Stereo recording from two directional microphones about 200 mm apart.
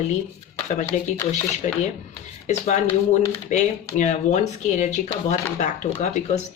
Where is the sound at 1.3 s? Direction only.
35° left (ahead or behind).